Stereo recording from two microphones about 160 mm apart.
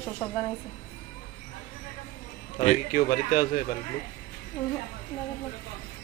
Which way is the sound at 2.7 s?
60° left (ahead or behind).